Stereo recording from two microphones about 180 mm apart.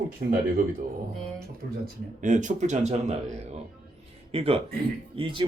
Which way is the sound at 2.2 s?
45° right (ahead or behind).